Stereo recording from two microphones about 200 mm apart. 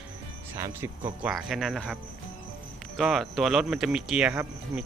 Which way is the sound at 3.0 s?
Centre (ahead or behind).